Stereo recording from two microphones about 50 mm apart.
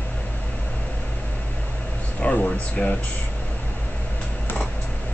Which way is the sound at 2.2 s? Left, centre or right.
Left.